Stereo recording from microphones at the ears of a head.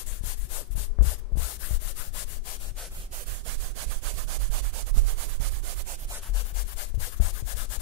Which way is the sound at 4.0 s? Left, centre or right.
Right.